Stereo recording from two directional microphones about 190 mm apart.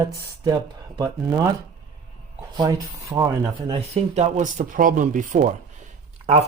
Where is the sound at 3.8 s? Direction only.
35° right (ahead or behind).